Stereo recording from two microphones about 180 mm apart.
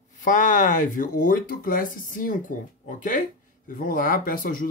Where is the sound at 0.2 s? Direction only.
45° left (ahead or behind).